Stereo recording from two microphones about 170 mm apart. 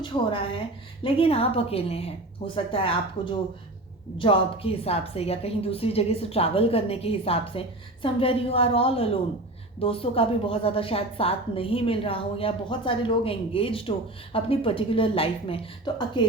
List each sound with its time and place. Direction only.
0.0 s a woman's voice: 30° left (ahead or behind)